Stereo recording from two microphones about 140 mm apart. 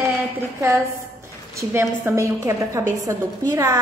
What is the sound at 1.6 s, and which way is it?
A woman's voice, 15° right (ahead or behind).